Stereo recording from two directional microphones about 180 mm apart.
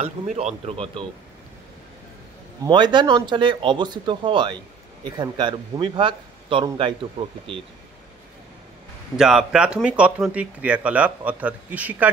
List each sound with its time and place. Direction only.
0.0 s speech: 40° right (ahead or behind)
2.6 s speech: 25° right (ahead or behind)
9.1 s speech: 5° right (ahead or behind)